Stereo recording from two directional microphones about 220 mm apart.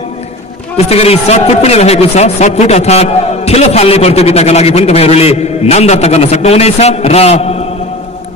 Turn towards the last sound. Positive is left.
turn(degrees=30)  # may be behind; listen again after turning